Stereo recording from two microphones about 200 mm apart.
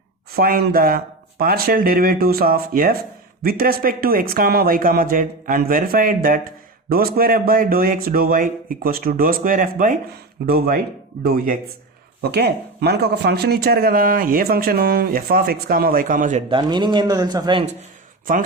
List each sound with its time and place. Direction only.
0.3 s speech: 50° right (ahead or behind)
16.5 s speech: 25° right (ahead or behind)
18.3 s speech: 45° right (ahead or behind)